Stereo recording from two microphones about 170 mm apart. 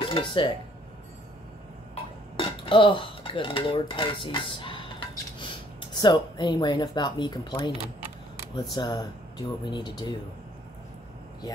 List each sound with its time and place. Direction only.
0.0 s dishes: 30° left (ahead or behind)
2.3 s dishes: 30° left (ahead or behind)
5.9 s speech: 25° left (ahead or behind)